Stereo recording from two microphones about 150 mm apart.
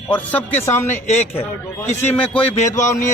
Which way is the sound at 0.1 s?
10° left (ahead or behind).